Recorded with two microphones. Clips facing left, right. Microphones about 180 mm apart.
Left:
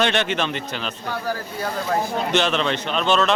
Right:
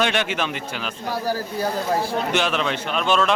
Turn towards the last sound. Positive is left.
turn(degrees=-10)  # may be behind; listen again after turning